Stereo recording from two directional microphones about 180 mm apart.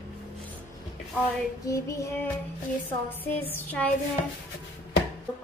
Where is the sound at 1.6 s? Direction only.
15° left (ahead or behind).